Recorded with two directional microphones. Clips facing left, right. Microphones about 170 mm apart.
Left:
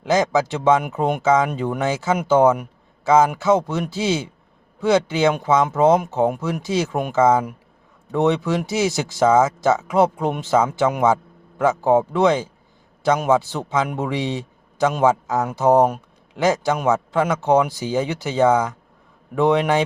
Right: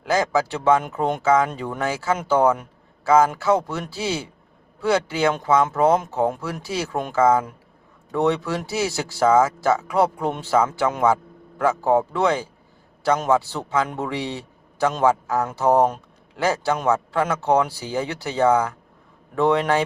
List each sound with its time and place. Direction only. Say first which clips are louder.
0.0 s a man's voice: left 3 dB; 20° left (ahead or behind)